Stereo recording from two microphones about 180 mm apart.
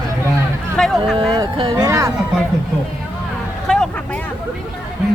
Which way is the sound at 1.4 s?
20° right (ahead or behind).